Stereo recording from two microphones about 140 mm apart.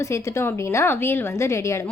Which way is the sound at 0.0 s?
20° left (ahead or behind).